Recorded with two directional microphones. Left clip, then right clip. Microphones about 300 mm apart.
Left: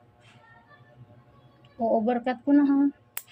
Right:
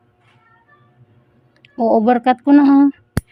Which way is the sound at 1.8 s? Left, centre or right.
Right.